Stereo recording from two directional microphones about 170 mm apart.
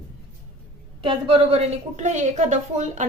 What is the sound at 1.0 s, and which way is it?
A woman's voice, 35° right (ahead or behind).